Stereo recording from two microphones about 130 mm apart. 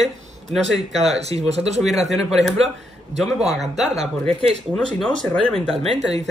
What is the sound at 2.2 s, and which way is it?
Speech, centre (ahead or behind).